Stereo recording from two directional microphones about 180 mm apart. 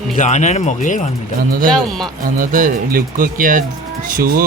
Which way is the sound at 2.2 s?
50° right (ahead or behind).